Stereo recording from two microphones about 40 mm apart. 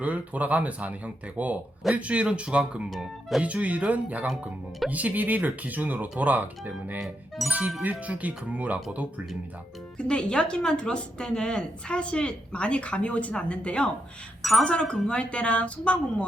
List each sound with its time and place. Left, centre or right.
0.0 s speech: right
2.9 s speech: centre
3.4 s speech: right
7.0 s speech: centre
7.8 s speech: right
10.0 s speech: left